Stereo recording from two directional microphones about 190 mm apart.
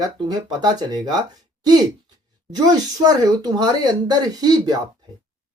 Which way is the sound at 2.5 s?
20° right (ahead or behind).